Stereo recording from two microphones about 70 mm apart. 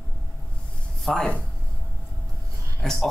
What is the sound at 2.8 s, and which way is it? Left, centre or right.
Speech, centre.